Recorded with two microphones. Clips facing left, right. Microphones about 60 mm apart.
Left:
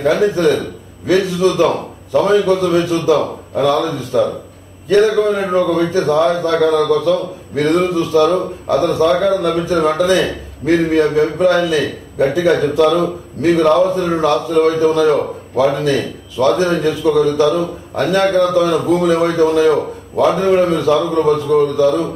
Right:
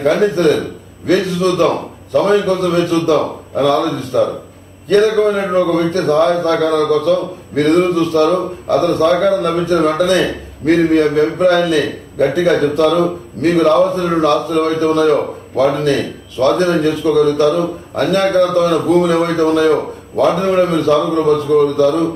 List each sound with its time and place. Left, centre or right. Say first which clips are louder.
0.0 s a man's voice: right 1 dB; right